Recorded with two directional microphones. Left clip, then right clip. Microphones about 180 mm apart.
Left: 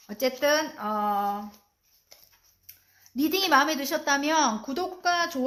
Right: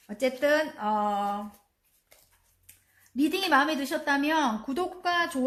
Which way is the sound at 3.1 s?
25° left (ahead or behind).